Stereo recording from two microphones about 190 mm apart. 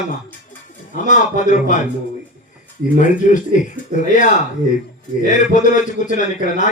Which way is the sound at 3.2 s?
40° left (ahead or behind).